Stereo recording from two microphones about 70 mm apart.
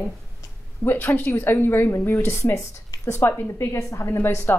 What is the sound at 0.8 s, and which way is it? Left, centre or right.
A woman's voice, left.